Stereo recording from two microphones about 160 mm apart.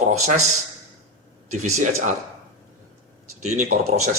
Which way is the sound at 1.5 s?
45° right (ahead or behind).